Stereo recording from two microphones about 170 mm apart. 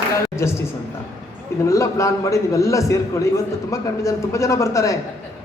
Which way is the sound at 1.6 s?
15° left (ahead or behind).